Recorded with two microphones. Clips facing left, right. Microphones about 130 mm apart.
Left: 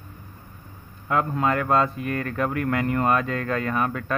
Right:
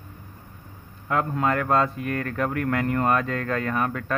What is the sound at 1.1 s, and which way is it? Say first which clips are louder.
Speech: left 1 dB; 15° left (ahead or behind).